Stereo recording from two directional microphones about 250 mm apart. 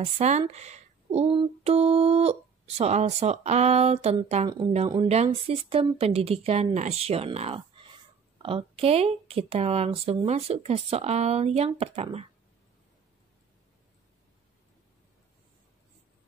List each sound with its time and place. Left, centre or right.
0.0 s speech: right